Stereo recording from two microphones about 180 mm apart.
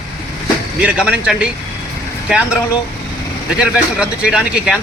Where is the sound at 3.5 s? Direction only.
5° right (ahead or behind).